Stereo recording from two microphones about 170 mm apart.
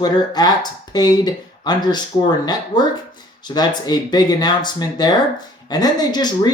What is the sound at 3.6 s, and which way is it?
Speech, 25° left (ahead or behind).